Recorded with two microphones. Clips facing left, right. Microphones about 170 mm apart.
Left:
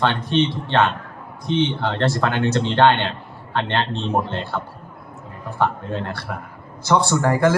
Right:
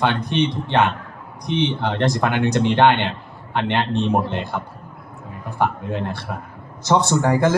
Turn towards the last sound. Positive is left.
turn(degrees=-20)  # may be behind; listen again after turning